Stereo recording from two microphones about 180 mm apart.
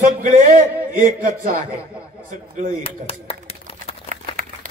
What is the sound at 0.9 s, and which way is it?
Speech, 50° right (ahead or behind).